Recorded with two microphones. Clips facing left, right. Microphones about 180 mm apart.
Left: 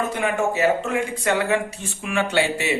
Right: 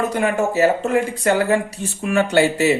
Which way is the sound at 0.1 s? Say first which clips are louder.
Right 3 dB; 40° right (ahead or behind).